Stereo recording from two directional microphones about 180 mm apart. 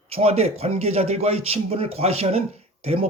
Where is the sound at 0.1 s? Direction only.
35° right (ahead or behind).